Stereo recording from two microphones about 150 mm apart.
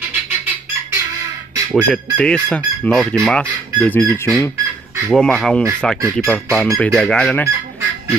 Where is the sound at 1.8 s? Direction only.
5° left (ahead or behind).